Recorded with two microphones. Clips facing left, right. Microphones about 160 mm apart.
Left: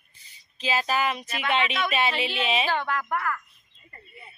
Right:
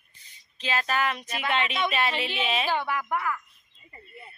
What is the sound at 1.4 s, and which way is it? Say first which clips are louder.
Speech: left 1 dB; 25° right (ahead or behind).